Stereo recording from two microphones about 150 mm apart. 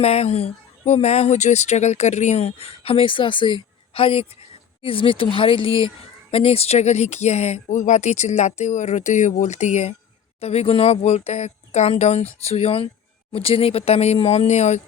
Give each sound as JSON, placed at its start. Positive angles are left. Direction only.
{"t": 0.0, "sound": "speech", "side_deg": 45}